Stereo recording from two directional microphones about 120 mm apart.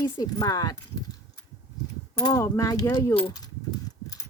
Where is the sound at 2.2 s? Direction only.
25° left (ahead or behind).